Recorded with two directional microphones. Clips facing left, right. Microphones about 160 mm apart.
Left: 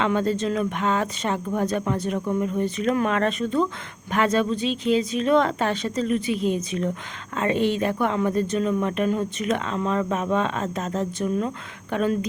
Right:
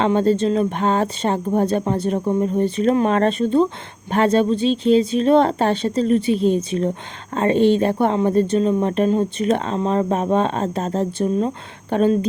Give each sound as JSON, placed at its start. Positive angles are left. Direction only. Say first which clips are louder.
{"t": 0.0, "sound": "a woman's voice", "louder": "right 6 dB", "side_deg": -30}